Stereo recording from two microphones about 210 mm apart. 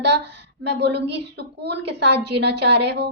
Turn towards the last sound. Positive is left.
turn(degrees=-50)  # may be behind; listen again after turning